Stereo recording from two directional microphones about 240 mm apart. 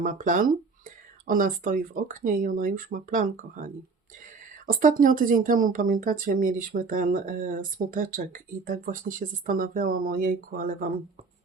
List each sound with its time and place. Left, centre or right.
0.0 s speech: right